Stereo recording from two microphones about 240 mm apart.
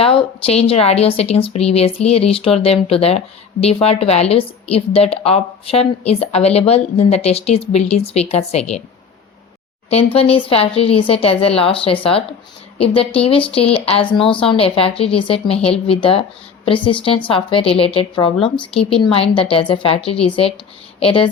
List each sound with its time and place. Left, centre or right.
0.0 s a woman's voice: left
9.9 s a woman's voice: left